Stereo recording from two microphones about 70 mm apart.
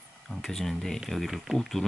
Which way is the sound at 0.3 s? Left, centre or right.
Centre.